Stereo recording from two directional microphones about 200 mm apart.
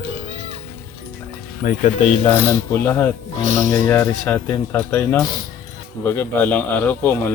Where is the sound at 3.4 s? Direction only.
40° right (ahead or behind).